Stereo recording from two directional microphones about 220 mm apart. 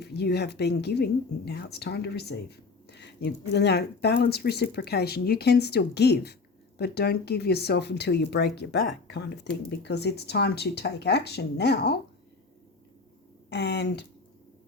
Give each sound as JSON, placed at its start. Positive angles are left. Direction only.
{"t": 0.0, "sound": "speech", "side_deg": 50}
{"t": 13.5, "sound": "speech", "side_deg": 50}